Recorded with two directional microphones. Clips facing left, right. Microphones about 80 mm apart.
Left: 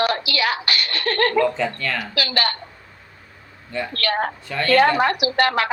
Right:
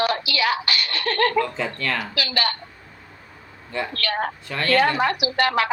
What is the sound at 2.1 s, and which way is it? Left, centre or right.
Speech, left.